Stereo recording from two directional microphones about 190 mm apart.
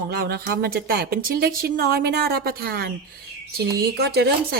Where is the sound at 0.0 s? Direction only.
50° right (ahead or behind).